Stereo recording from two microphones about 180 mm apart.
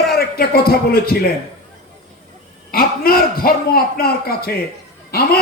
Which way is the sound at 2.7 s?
55° left (ahead or behind).